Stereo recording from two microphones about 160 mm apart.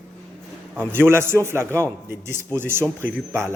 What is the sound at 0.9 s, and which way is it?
A man's voice, 15° right (ahead or behind).